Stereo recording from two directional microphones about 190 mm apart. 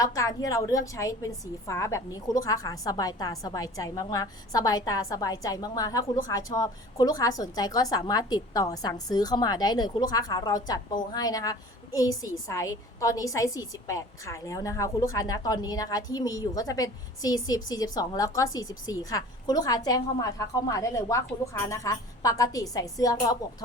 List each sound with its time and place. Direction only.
0.0 s a woman's voice: 20° left (ahead or behind)